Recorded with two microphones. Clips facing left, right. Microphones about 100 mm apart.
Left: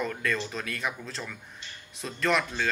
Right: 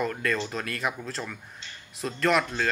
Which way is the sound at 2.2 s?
5° right (ahead or behind).